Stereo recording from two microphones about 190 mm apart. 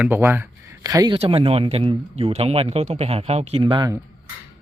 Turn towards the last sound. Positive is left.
turn(degrees=-25)  # may be behind; listen again after turning